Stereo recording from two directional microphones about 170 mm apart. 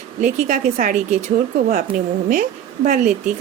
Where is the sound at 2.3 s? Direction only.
50° right (ahead or behind).